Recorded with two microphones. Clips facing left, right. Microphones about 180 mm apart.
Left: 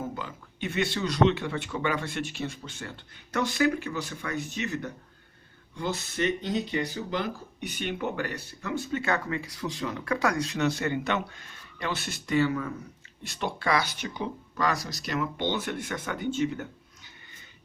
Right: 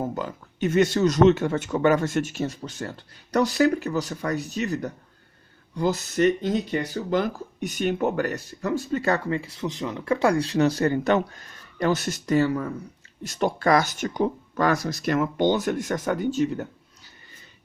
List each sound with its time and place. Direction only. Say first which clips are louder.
0.0 s speech: right 6 dB; 45° right (ahead or behind)